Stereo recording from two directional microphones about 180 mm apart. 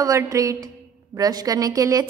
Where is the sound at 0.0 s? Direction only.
20° right (ahead or behind).